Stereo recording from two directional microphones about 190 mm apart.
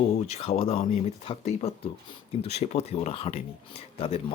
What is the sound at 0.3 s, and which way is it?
Speech, 30° left (ahead or behind).